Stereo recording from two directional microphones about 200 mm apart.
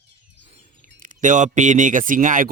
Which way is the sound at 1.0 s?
40° right (ahead or behind).